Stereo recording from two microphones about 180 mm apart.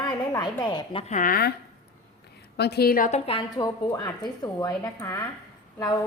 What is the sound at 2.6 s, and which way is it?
Speech, 65° left (ahead or behind).